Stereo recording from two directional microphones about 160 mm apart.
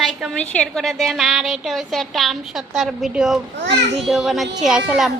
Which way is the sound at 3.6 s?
90° right.